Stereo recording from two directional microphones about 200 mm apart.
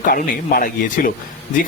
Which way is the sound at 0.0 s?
45° left (ahead or behind).